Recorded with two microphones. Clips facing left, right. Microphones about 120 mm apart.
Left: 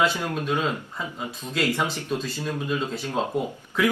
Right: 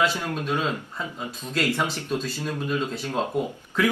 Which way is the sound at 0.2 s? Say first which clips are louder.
Left 1 dB; 15° left (ahead or behind).